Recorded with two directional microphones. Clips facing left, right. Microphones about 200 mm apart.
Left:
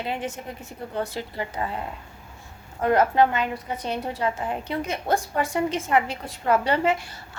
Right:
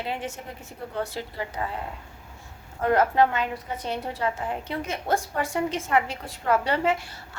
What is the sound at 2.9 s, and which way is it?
A woman's voice, 15° left (ahead or behind).